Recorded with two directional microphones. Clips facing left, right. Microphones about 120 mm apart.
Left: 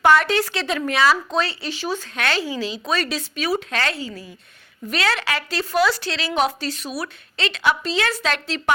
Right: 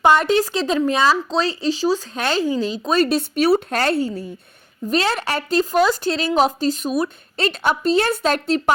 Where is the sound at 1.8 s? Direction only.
35° right (ahead or behind); by 4.1 s 50° right (ahead or behind).